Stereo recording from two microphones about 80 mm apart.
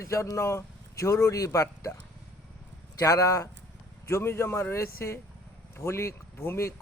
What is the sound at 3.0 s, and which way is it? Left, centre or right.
Speech, left.